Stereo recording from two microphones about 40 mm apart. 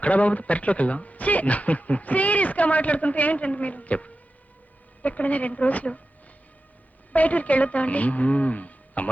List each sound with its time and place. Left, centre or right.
0.0 s speech: left
7.1 s speech: left